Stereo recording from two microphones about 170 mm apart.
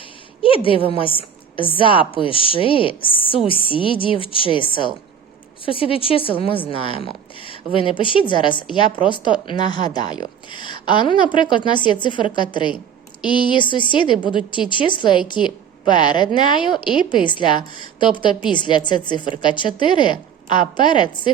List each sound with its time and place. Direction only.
0.4 s a woman's voice: 30° left (ahead or behind)